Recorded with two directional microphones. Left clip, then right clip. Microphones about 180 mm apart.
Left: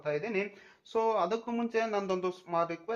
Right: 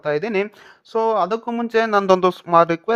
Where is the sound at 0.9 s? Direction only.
45° right (ahead or behind).